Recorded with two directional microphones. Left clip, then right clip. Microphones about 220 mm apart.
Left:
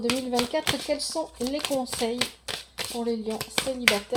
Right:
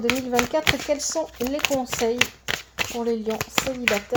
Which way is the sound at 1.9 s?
25° right (ahead or behind).